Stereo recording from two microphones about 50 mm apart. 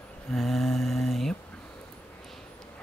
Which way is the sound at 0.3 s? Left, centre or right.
Centre.